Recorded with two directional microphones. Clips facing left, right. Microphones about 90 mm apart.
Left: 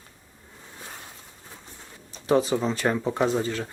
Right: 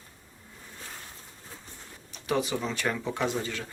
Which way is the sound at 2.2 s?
35° left (ahead or behind).